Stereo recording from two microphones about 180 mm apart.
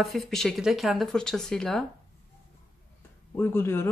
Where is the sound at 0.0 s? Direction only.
Centre (ahead or behind).